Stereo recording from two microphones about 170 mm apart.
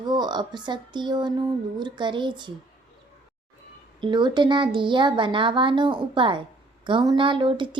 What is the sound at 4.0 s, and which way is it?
A woman's voice, 25° right (ahead or behind).